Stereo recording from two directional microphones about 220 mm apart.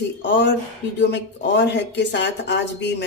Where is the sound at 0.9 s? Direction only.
50° left (ahead or behind).